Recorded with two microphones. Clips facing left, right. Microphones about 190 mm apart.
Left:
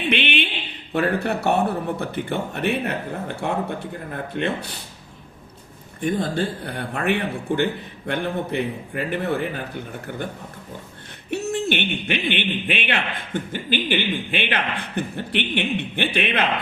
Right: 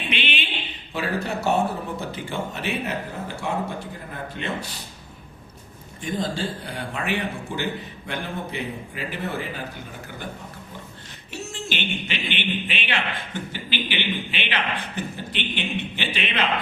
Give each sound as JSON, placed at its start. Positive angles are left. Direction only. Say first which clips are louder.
{"t": 0.1, "sound": "a sound", "louder": "left 6 dB", "side_deg": 60}
{"t": 0.9, "sound": "speech", "louder": "left 5 dB", "side_deg": 60}
{"t": 6.0, "sound": "speech", "louder": "left 4 dB", "side_deg": 60}
{"t": 11.3, "sound": "speech", "louder": "left 9 dB", "side_deg": 60}